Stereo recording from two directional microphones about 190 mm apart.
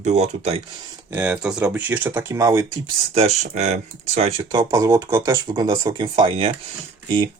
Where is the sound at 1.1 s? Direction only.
10° right (ahead or behind).